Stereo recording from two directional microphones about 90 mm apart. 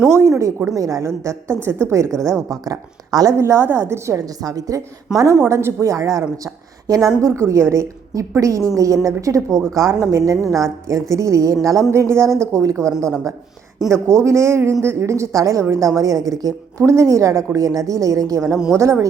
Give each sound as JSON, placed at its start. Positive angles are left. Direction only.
{"t": 0.0, "sound": "a woman's voice", "side_deg": -30}
{"t": 2.5, "sound": "a woman's voice", "side_deg": -45}
{"t": 3.3, "sound": "a woman's voice", "side_deg": -30}